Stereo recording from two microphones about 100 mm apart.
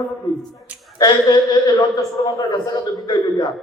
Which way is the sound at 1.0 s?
40° left (ahead or behind).